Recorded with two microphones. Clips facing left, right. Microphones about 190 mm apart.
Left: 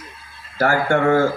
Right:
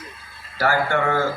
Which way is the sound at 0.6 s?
50° left (ahead or behind).